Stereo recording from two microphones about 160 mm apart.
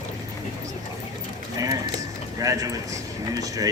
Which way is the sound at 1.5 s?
20° right (ahead or behind).